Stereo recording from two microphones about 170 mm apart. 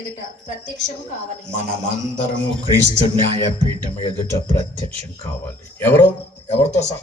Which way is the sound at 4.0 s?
20° left (ahead or behind).